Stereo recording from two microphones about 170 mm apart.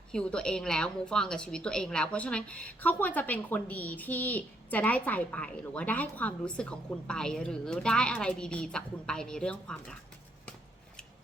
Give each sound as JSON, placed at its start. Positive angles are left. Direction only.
{"t": 0.1, "sound": "a woman's voice", "side_deg": 5}